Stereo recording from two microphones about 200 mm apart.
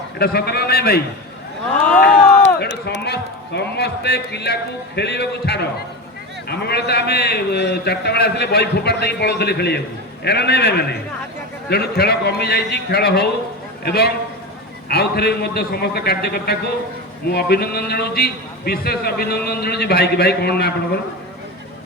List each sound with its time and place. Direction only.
0.2 s a man's voice: 55° left (ahead or behind)
2.4 s a man's voice: 60° left (ahead or behind)